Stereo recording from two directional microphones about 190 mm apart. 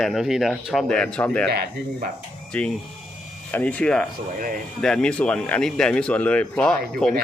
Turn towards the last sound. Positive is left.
turn(degrees=5)  # may be behind; listen again after turning